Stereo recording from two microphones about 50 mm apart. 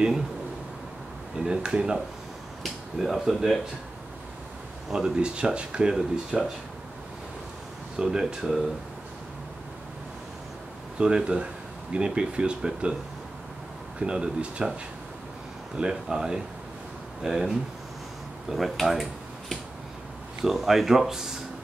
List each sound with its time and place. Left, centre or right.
1.4 s speech: centre
3.0 s speech: centre
4.9 s speech: centre
8.0 s speech: centre
11.0 s speech: centre
13.9 s speech: centre
15.7 s speech: centre
20.4 s speech: centre